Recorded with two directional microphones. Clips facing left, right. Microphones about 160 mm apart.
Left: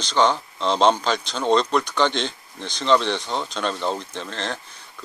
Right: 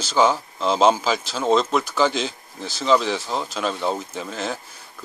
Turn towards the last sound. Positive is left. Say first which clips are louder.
# right 2 dB
turn(degrees=-5)  # may be behind; listen again after turning